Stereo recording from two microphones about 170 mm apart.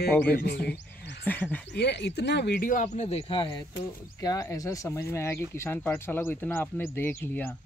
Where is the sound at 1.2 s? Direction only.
10° left (ahead or behind).